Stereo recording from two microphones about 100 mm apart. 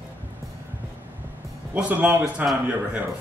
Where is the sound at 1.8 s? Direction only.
15° right (ahead or behind).